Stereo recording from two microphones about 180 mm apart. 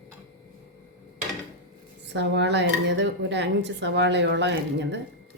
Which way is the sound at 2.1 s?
75° right (ahead or behind).